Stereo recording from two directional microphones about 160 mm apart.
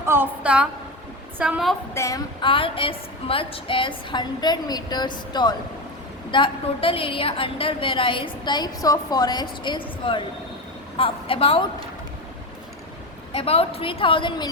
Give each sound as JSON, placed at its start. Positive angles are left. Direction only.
{"t": 0.0, "sound": "a woman's voice", "side_deg": -15}
{"t": 1.9, "sound": "a woman's voice", "side_deg": 20}
{"t": 2.4, "sound": "a woman's voice", "side_deg": 35}
{"t": 13.3, "sound": "a woman's voice", "side_deg": 35}